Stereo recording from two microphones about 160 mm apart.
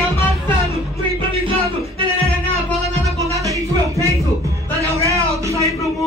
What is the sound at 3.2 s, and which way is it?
Music, 20° left (ahead or behind).